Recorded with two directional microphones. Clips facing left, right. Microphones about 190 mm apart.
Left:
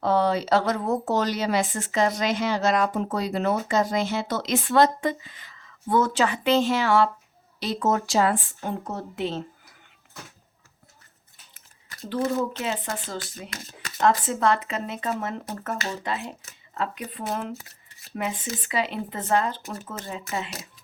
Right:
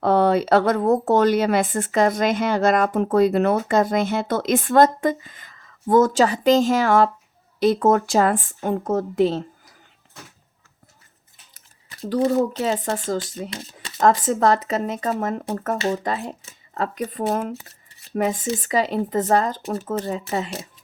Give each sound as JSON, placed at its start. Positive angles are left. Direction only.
{"t": 0.0, "sound": "speech", "side_deg": -55}
{"t": 12.0, "sound": "speech", "side_deg": -40}
{"t": 13.1, "sound": "speech", "side_deg": -30}
{"t": 14.0, "sound": "speech", "side_deg": -45}